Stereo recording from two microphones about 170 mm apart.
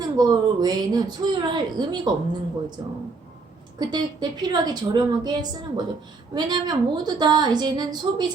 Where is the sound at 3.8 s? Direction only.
25° right (ahead or behind).